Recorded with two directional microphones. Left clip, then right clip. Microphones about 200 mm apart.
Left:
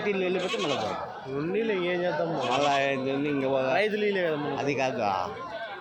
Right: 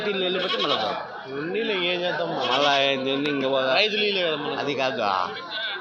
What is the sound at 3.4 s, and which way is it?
Speech, 15° left (ahead or behind).